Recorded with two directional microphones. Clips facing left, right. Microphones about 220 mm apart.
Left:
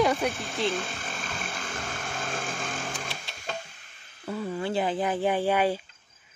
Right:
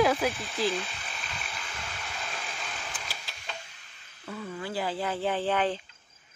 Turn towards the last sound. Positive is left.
turn(degrees=10)  # may be behind; listen again after turning